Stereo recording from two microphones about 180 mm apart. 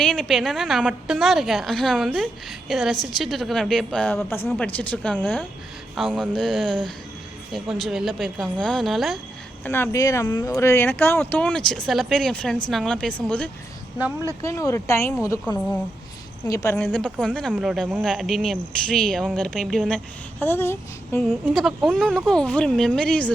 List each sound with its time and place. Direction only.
0.0 s a woman's voice: 5° left (ahead or behind)
9.6 s a woman's voice: 10° left (ahead or behind)
14.4 s speech: 15° left (ahead or behind)
16.7 s a woman's voice: 5° left (ahead or behind)
20.4 s a woman's voice: 10° left (ahead or behind)